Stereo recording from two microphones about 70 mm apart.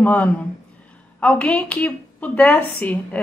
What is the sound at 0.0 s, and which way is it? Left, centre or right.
A woman's voice, left.